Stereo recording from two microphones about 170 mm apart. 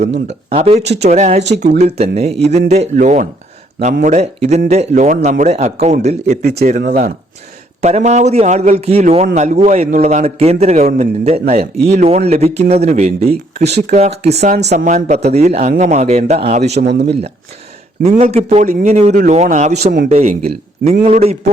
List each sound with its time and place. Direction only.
0.0 s a man's voice: 40° right (ahead or behind)
6.4 s a man's voice: 70° right (ahead or behind); by 16.8 s 40° right (ahead or behind)
18.0 s a man's voice: 40° right (ahead or behind)